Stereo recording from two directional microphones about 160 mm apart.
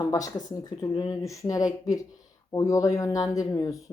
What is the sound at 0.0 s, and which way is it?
Speech, 20° left (ahead or behind).